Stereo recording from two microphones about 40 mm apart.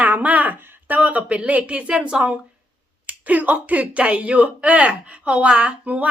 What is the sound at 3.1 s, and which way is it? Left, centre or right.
Speech, right.